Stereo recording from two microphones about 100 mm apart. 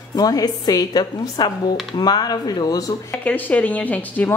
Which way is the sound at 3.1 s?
20° left (ahead or behind).